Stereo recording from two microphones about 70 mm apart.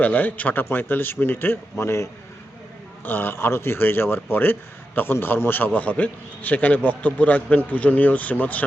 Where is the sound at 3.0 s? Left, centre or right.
Left.